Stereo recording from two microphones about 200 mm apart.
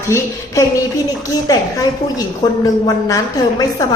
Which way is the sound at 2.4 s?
20° left (ahead or behind).